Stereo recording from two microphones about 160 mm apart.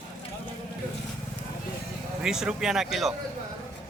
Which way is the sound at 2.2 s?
5° right (ahead or behind).